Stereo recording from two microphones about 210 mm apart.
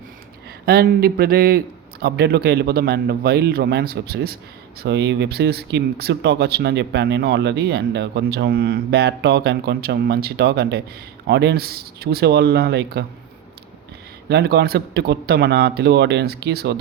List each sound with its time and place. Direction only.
0.6 s speech: 45° right (ahead or behind)
14.3 s speech: 50° right (ahead or behind)